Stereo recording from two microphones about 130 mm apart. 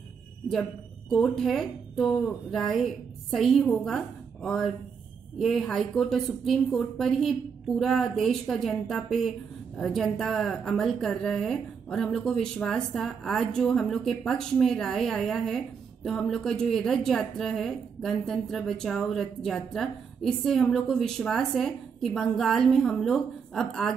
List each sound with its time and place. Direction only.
0.5 s a woman's voice: 5° left (ahead or behind)